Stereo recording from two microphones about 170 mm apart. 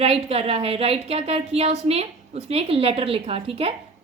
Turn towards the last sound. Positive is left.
turn(degrees=-35)  # may be behind; listen again after turning